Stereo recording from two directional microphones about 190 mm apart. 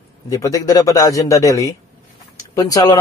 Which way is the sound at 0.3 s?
15° left (ahead or behind).